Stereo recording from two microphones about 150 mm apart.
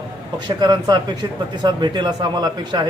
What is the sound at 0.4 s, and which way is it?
A man's voice, 30° right (ahead or behind).